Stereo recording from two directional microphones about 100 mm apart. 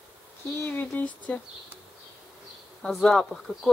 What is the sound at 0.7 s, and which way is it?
Speech, 15° left (ahead or behind).